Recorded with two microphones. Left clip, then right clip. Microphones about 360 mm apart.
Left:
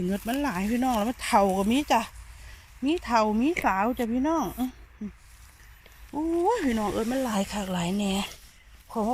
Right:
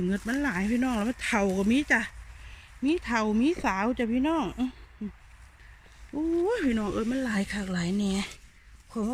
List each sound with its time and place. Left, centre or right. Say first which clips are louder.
0.1 s speech: left 3 dB; centre
6.1 s speech: left 2 dB; centre